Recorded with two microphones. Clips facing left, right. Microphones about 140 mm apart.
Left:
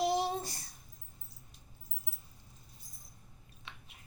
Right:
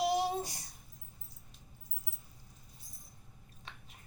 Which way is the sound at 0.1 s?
15° right (ahead or behind).